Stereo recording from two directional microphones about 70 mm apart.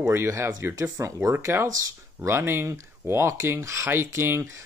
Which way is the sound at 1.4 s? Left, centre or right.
Right.